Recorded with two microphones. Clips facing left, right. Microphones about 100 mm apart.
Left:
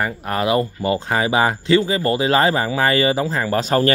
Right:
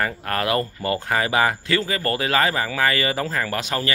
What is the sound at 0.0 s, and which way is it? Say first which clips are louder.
Speech: left 3 dB; 20° left (ahead or behind).